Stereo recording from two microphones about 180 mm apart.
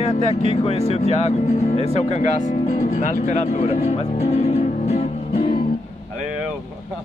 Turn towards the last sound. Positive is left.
turn(degrees=30)  # may be behind; listen again after turning